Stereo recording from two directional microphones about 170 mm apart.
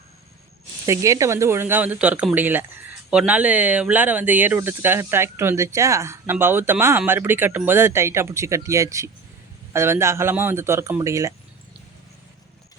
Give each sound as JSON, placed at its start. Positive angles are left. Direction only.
{"t": 0.9, "sound": "speech", "side_deg": -20}